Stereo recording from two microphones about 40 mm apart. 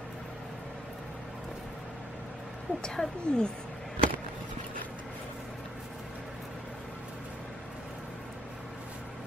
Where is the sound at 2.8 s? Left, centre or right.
Centre.